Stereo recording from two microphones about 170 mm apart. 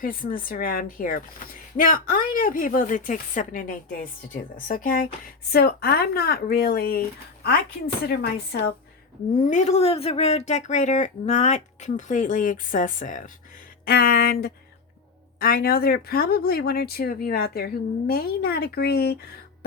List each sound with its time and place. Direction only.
0.0 s a woman's voice: 55° left (ahead or behind)
5.5 s speech: 65° left (ahead or behind)
8.0 s speech: 65° left (ahead or behind)
9.5 s a woman's voice: 45° left (ahead or behind)
13.8 s speech: 60° left (ahead or behind)